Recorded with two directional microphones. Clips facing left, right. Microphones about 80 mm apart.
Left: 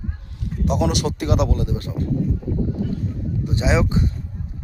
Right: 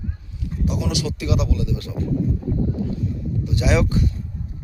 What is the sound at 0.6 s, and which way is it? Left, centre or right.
Speech, left.